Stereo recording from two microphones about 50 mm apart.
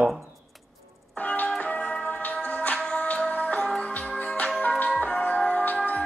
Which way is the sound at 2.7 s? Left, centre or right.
Centre.